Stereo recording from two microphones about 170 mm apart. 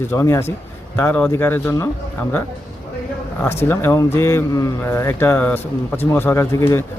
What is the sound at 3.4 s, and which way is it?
Speech, 15° left (ahead or behind).